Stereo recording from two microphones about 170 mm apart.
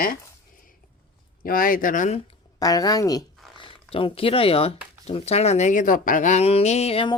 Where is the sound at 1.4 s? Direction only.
55° left (ahead or behind).